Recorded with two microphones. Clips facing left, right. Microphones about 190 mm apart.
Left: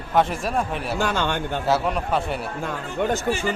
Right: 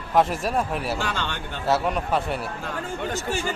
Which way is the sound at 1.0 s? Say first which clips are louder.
Left 6 dB; 45° left (ahead or behind).